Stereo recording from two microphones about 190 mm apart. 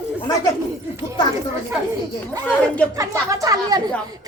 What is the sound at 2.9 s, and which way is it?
Speech, 15° right (ahead or behind).